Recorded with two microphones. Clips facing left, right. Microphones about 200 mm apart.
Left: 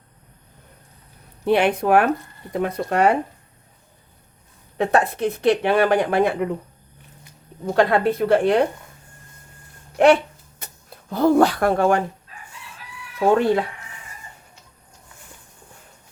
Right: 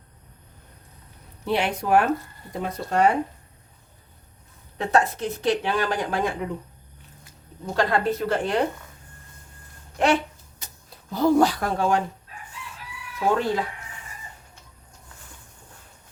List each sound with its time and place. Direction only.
1.5 s speech: 55° left (ahead or behind)
4.8 s speech: 60° left (ahead or behind)
7.7 s speech: 60° left (ahead or behind)
10.6 s speech: 55° left (ahead or behind)
13.1 s speech: 60° left (ahead or behind)